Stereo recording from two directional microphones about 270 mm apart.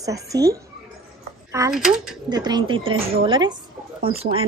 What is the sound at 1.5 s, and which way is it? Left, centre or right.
Speech, centre.